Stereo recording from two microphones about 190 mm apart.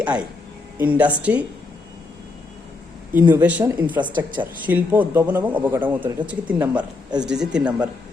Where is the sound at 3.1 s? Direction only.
10° right (ahead or behind).